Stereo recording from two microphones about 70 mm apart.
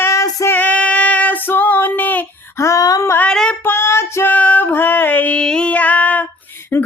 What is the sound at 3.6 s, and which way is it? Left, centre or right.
Female singing, left.